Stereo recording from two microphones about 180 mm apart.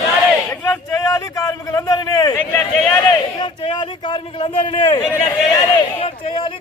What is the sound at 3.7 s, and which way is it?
A man's voice, 25° left (ahead or behind).